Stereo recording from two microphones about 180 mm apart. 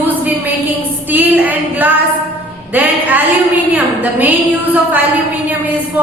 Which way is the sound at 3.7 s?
10° right (ahead or behind).